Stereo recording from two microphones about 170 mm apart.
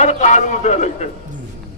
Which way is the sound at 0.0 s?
45° left (ahead or behind).